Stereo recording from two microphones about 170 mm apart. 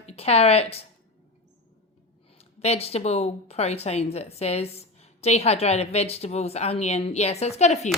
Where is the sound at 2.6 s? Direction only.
35° left (ahead or behind).